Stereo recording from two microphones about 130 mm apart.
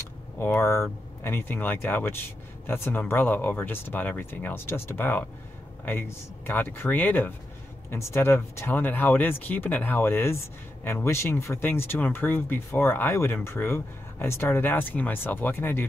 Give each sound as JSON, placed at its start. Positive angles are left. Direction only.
{"t": 0.4, "sound": "speech", "side_deg": 20}